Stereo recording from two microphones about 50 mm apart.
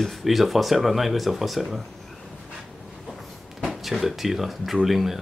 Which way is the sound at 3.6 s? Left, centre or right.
Centre.